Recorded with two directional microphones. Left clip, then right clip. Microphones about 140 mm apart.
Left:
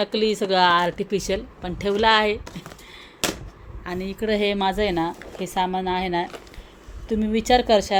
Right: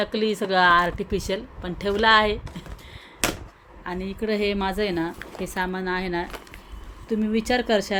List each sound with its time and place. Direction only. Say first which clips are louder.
0.0 s a woman's voice: left 2 dB; 15° left (ahead or behind)
3.8 s a woman's voice: left 2 dB; 20° left (ahead or behind)